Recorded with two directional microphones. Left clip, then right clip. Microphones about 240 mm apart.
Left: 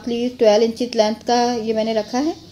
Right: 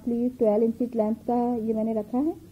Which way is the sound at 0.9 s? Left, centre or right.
Centre.